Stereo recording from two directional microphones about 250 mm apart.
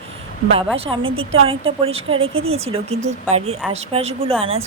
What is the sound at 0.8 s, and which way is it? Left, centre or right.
A woman's voice, right.